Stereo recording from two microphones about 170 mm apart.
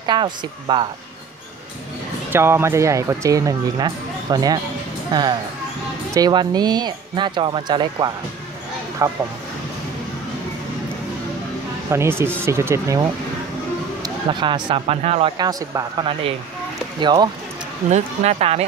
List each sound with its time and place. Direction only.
0.0 s speech: 25° right (ahead or behind)
2.3 s speech: 15° right (ahead or behind)
6.1 s speech: 25° right (ahead or behind)
11.9 s speech: 15° right (ahead or behind); by 15.3 s 35° right (ahead or behind)
15.3 s speech: 25° right (ahead or behind)
17.8 s speech: 40° right (ahead or behind)